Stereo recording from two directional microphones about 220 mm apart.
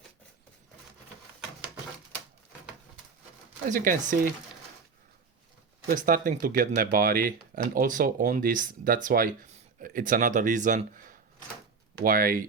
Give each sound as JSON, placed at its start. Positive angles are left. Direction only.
{"t": 3.7, "sound": "speech", "side_deg": -35}
{"t": 5.9, "sound": "speech", "side_deg": -40}